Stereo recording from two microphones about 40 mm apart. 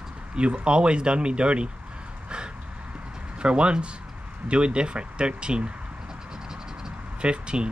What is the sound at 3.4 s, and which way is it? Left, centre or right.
Speech, right.